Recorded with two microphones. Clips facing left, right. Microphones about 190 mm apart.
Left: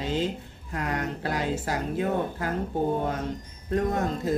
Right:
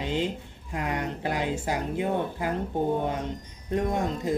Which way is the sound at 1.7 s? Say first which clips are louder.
Even; 15° right (ahead or behind).